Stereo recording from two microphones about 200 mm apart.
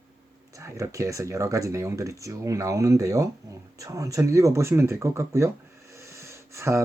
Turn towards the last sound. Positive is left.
turn(degrees=-15)  # may be behind; listen again after turning